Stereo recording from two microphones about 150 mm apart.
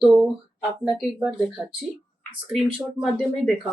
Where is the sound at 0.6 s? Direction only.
5° right (ahead or behind).